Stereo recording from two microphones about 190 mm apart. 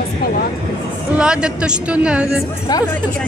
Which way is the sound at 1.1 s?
5° right (ahead or behind).